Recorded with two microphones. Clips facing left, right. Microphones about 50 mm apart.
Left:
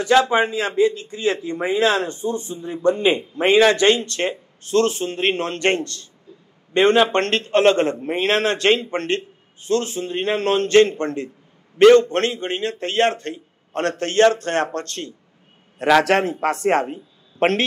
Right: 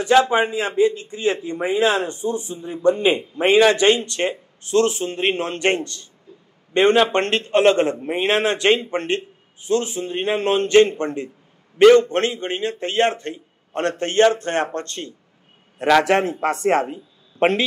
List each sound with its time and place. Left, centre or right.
0.1 s speech: centre
0.5 s speech: centre
7.7 s speech: centre
11.8 s a man's voice: centre; by 15.0 s right
16.0 s speech: centre
17.4 s a man's voice: centre